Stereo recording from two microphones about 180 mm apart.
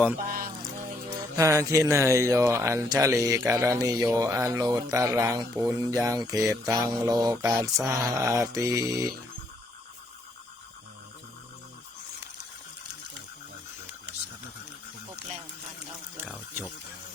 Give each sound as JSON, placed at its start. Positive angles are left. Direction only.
{"t": 0.3, "sound": "music", "side_deg": -50}
{"t": 1.4, "sound": "speech", "side_deg": -15}